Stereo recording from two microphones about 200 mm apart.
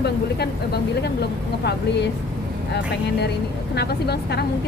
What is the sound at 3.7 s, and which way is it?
Speech, 55° left (ahead or behind).